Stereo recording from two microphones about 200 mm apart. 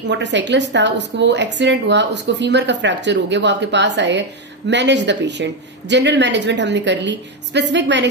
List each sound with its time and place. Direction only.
0.1 s a woman's voice: 60° right (ahead or behind)